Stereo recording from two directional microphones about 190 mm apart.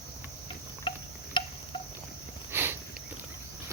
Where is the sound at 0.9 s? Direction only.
25° left (ahead or behind).